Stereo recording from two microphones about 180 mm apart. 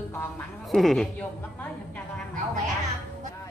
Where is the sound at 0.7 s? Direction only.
Centre (ahead or behind).